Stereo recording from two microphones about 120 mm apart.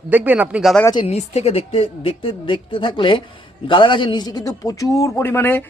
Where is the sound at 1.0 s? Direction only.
65° left (ahead or behind).